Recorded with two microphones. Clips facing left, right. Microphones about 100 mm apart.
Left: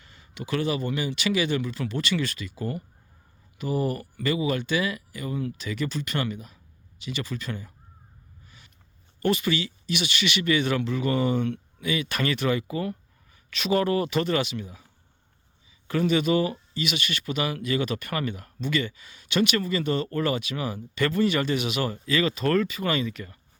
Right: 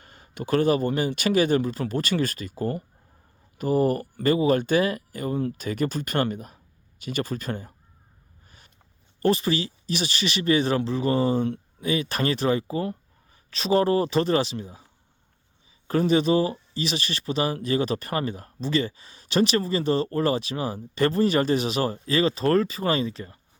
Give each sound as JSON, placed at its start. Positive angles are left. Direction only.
{"t": 0.0, "sound": "speech", "side_deg": -45}
{"t": 8.4, "sound": "a sound", "side_deg": -45}
{"t": 9.2, "sound": "speech", "side_deg": -35}
{"t": 15.9, "sound": "speech", "side_deg": -35}